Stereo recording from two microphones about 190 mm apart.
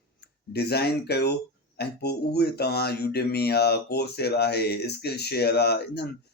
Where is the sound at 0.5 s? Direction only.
60° left (ahead or behind).